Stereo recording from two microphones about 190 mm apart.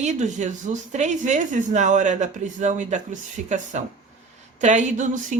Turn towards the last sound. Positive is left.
turn(degrees=-40)  # may be behind; listen again after turning